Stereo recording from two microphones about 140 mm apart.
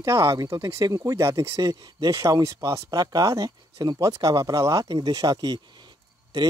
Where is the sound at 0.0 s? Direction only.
20° right (ahead or behind).